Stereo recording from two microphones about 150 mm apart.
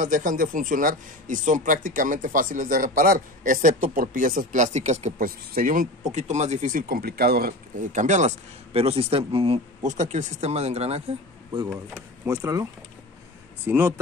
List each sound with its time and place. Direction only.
0.0 s speech: 60° right (ahead or behind)
5.2 s speech: 70° right (ahead or behind)
7.9 s speech: 55° right (ahead or behind)
9.8 s speech: 50° right (ahead or behind)
11.5 s speech: 25° right (ahead or behind)
13.7 s speech: 15° right (ahead or behind)